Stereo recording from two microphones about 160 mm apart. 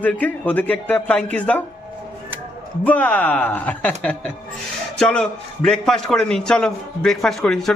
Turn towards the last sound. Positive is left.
turn(degrees=5)  # may be behind; listen again after turning